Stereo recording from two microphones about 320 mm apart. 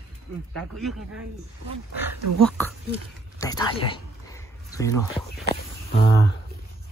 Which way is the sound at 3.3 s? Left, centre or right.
Centre.